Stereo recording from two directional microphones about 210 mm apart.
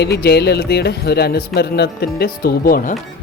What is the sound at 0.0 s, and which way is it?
Speech, 50° left (ahead or behind).